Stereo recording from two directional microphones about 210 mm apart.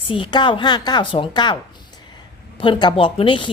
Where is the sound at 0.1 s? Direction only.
20° left (ahead or behind).